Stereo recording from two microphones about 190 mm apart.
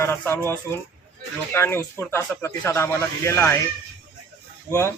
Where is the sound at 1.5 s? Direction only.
10° left (ahead or behind).